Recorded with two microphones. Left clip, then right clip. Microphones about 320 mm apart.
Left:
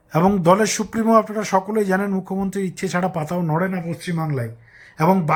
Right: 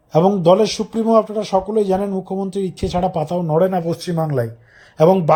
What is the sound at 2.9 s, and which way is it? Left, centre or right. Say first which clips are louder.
Speech: right 4 dB; centre.